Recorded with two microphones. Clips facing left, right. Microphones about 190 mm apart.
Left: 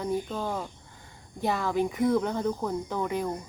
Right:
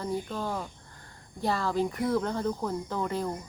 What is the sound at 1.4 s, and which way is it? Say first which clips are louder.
Speech: left 1 dB; 15° left (ahead or behind).